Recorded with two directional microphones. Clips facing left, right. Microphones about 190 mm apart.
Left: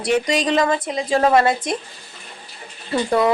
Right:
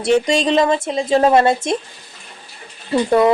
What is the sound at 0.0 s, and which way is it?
Speech, 25° right (ahead or behind).